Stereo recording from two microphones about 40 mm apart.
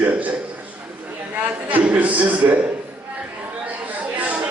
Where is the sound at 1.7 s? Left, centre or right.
Right.